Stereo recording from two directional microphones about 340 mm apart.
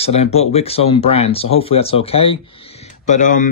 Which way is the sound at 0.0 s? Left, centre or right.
Centre.